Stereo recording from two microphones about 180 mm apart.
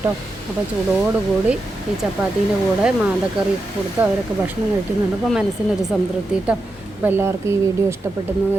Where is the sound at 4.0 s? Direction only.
10° right (ahead or behind).